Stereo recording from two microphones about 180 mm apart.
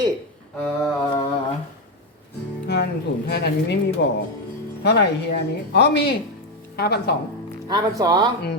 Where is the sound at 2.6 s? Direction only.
65° left (ahead or behind).